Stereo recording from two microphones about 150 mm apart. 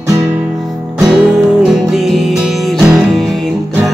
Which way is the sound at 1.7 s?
5° right (ahead or behind).